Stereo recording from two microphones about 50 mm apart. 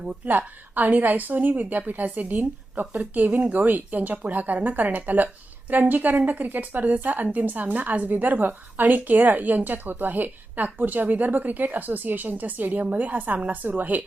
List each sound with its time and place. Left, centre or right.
0.3 s a woman's voice: right